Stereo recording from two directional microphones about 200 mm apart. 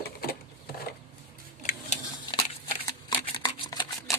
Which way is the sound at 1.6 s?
40° left (ahead or behind).